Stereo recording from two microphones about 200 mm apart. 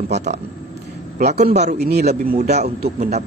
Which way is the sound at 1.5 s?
35° right (ahead or behind).